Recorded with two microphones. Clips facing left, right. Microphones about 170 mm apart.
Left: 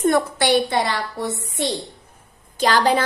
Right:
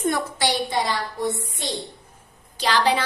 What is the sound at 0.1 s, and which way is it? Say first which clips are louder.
Speech: left 6 dB; 60° left (ahead or behind).